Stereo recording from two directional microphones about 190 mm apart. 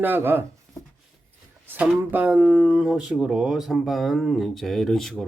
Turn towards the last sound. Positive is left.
turn(degrees=0)  # may be behind; listen again after turning